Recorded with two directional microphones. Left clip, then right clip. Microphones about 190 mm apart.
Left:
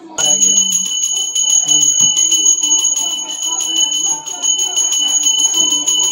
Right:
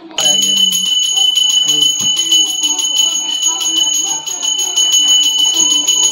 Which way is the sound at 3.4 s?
Centre (ahead or behind).